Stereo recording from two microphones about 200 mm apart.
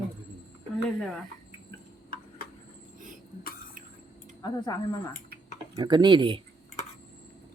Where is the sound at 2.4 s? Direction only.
45° left (ahead or behind).